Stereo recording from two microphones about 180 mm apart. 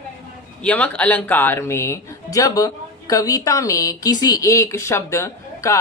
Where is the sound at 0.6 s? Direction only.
5° left (ahead or behind).